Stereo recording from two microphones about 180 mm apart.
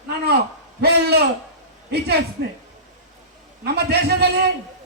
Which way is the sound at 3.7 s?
60° right (ahead or behind).